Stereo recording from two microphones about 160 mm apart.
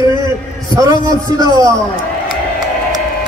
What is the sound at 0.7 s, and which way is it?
Speech, 25° right (ahead or behind).